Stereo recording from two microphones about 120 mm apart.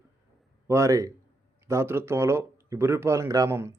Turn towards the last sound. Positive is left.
turn(degrees=-25)  # may be behind; listen again after turning